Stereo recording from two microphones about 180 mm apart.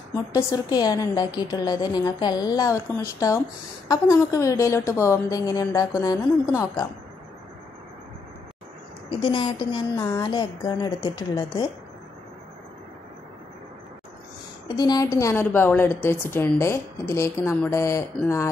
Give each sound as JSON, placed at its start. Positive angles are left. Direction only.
{"t": 0.1, "sound": "a woman's voice", "side_deg": 20}
{"t": 9.2, "sound": "a woman's voice", "side_deg": 25}
{"t": 14.8, "sound": "a woman's voice", "side_deg": 20}